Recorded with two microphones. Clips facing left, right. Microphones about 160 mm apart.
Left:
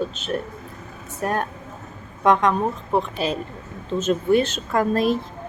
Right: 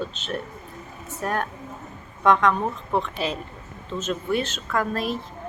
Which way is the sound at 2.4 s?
10° left (ahead or behind).